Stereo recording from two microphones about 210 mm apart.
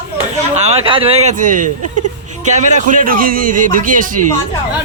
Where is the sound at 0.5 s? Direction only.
30° right (ahead or behind).